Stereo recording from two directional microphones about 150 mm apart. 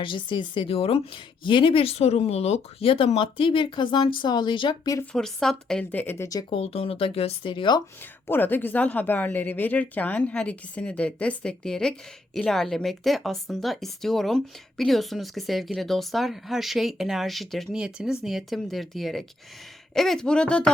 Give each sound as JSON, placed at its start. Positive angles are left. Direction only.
{"t": 0.0, "sound": "a woman's voice", "side_deg": 35}
{"t": 5.1, "sound": "speech", "side_deg": 5}
{"t": 6.5, "sound": "a woman's voice", "side_deg": 40}
{"t": 8.3, "sound": "speech", "side_deg": 15}